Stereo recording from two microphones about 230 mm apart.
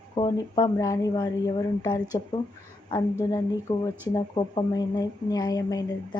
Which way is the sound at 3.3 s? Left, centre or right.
Centre.